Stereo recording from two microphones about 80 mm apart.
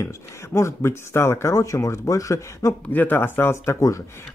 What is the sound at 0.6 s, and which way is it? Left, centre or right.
Speech, left.